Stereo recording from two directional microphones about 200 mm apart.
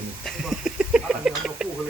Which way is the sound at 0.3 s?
Centre (ahead or behind).